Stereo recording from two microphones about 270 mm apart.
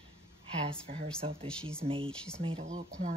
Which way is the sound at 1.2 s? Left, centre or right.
Right.